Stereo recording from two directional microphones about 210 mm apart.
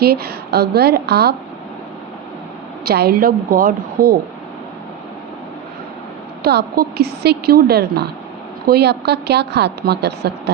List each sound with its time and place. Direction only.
0.0 s a woman's voice: 50° right (ahead or behind)
2.8 s a woman's voice: 50° right (ahead or behind)
6.4 s a woman's voice: 50° right (ahead or behind)